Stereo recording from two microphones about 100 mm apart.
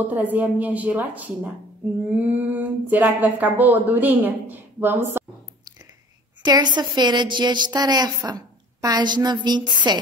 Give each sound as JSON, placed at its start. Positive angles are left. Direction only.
{"t": 0.1, "sound": "speech", "side_deg": -15}
{"t": 6.4, "sound": "a woman's voice", "side_deg": -45}